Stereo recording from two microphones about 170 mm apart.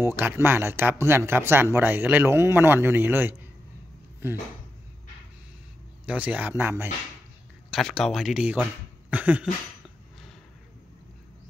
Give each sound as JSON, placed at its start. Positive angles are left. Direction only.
{"t": 0.0, "sound": "speech", "side_deg": -15}
{"t": 6.0, "sound": "speech", "side_deg": -10}
{"t": 7.7, "sound": "speech", "side_deg": 0}